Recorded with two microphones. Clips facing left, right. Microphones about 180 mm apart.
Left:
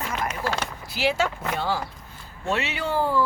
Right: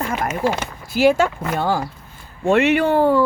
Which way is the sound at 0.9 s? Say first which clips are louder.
Right 9 dB; 50° right (ahead or behind).